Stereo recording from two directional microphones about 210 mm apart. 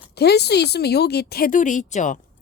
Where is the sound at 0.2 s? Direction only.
50° left (ahead or behind).